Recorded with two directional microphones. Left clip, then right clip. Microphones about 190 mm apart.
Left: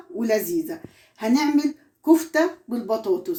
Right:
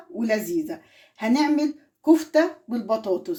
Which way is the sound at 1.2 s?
50° right (ahead or behind).